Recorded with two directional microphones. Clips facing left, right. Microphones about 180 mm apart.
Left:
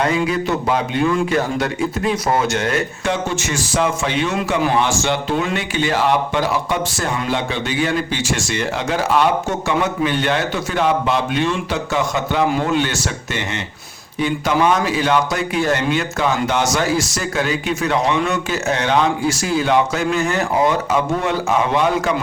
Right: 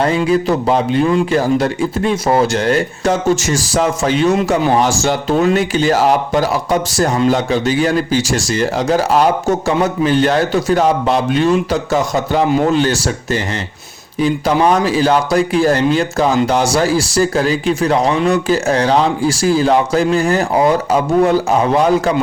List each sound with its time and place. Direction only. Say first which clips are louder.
0.0 s speech: right 4 dB; 30° right (ahead or behind)